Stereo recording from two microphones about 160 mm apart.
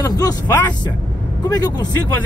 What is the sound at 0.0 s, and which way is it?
Speech, 25° left (ahead or behind).